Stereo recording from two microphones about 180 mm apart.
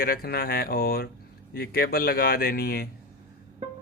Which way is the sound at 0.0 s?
55° left (ahead or behind).